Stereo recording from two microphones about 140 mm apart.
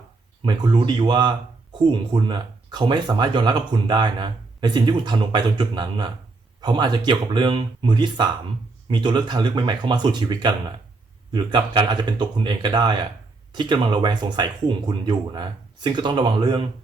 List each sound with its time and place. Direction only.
0.4 s speech: 30° right (ahead or behind)